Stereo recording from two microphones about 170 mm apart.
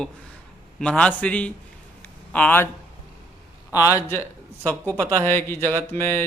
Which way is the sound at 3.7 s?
20° left (ahead or behind).